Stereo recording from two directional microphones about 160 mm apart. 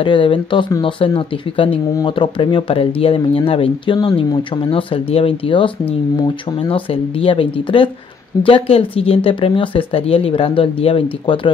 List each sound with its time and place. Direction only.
0.0 s speech: 30° left (ahead or behind)